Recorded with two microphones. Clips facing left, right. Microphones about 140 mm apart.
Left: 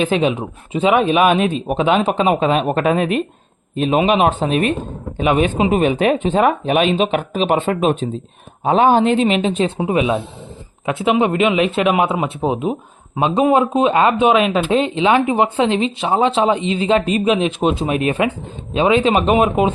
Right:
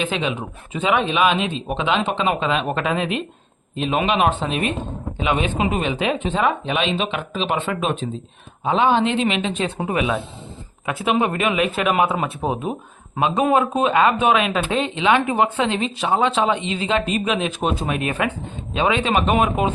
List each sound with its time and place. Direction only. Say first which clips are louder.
0.0 s speech: left 7 dB; 35° left (ahead or behind)
1.2 s speech: left 5 dB; 45° left (ahead or behind); by 12.1 s 25° left (ahead or behind)
12.4 s speech: left 5 dB; centre (ahead or behind)
13.1 s speech: left 4 dB; 25° left (ahead or behind)